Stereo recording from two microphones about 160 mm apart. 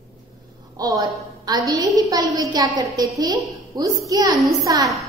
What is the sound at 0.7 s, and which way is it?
A woman's voice, 20° right (ahead or behind).